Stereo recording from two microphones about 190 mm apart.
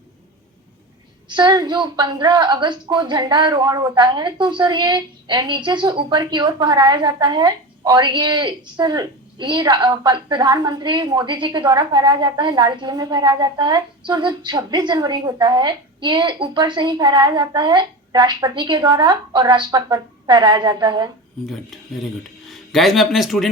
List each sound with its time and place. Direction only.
1.3 s a woman's voice: 20° right (ahead or behind)
21.4 s speech: centre (ahead or behind)